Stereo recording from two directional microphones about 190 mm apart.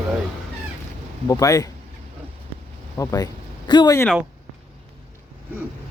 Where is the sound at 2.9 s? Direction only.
15° left (ahead or behind).